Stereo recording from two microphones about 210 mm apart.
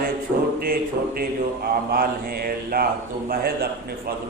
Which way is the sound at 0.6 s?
45° right (ahead or behind).